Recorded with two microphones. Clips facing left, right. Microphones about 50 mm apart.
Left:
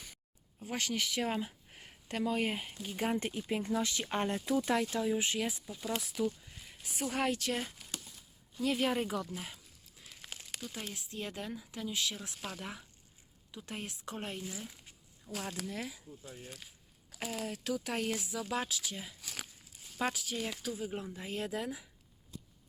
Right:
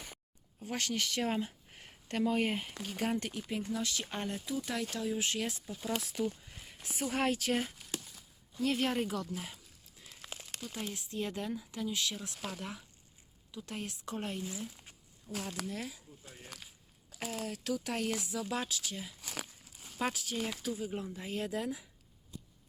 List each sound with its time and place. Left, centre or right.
0.6 s speech: centre
10.0 s crumpling: centre
10.6 s speech: centre
17.2 s speech: centre